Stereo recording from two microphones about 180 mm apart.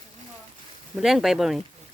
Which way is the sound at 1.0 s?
Centre (ahead or behind).